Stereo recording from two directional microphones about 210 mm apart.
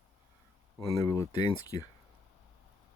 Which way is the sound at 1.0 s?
15° left (ahead or behind).